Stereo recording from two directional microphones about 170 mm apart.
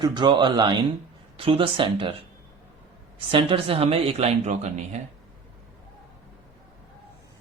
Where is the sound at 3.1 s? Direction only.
30° right (ahead or behind).